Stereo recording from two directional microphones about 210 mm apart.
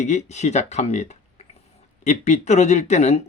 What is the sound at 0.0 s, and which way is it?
Speech, 35° left (ahead or behind).